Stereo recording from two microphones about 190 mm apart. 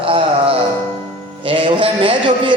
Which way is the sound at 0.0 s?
30° right (ahead or behind).